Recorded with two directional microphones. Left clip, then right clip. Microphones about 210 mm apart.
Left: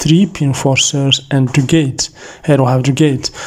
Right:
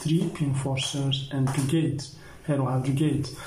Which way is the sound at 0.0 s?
50° left (ahead or behind).